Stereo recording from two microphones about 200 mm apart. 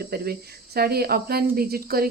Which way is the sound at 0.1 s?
50° right (ahead or behind).